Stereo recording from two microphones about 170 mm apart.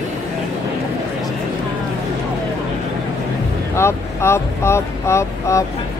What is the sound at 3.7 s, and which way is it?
Speech, 15° left (ahead or behind).